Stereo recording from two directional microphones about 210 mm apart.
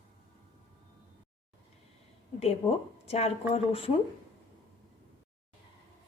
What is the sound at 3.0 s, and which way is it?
Speech, 30° left (ahead or behind).